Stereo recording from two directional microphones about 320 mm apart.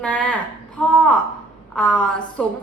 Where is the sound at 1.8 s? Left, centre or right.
Centre.